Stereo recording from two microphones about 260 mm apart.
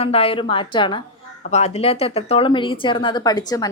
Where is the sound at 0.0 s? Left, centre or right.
Left.